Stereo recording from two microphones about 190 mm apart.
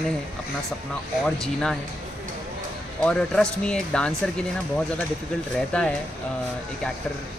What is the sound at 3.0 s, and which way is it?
Speech, 5° left (ahead or behind).